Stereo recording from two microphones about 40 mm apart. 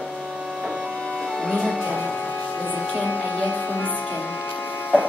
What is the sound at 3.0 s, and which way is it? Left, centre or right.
Speech, left.